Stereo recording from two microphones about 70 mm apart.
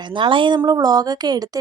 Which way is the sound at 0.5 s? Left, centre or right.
Right.